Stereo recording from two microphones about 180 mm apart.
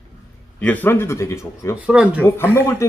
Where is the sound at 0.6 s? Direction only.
10° left (ahead or behind).